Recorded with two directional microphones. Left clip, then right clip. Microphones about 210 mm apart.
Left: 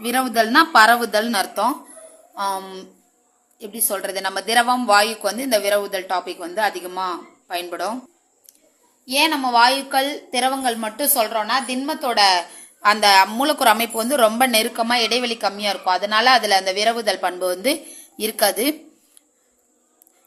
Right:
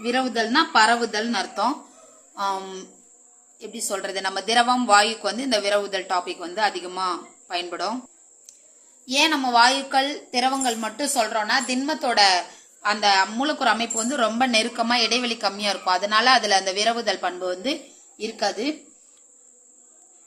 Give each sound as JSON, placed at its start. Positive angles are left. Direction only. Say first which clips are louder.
{"t": 0.0, "sound": "a woman's voice", "louder": "left 4 dB", "side_deg": 30}
{"t": 8.5, "sound": "a sound", "louder": "right 4 dB", "side_deg": 10}
{"t": 9.0, "sound": "a woman's voice", "louder": "left 2 dB", "side_deg": 10}
{"t": 12.8, "sound": "a woman's voice", "louder": "left 6 dB", "side_deg": 30}